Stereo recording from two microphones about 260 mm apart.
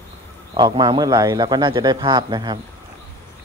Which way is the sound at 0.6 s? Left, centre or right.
Centre.